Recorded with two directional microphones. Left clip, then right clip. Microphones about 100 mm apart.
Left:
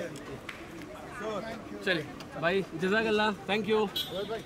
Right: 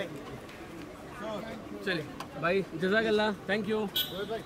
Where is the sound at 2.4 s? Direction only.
25° right (ahead or behind).